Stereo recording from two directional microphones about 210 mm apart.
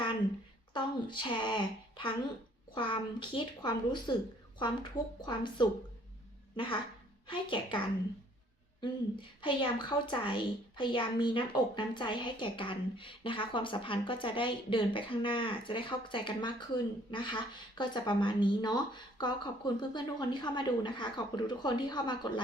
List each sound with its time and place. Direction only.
0.7 s a woman's voice: 20° left (ahead or behind)
8.8 s a woman's voice: 25° left (ahead or behind)